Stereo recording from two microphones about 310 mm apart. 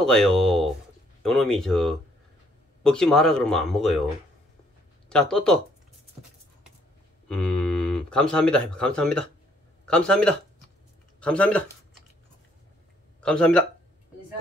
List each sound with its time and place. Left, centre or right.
0.0 s a sound: centre
1.2 s speech: centre
5.1 s speech: centre
7.2 s speech: centre
13.2 s speech: centre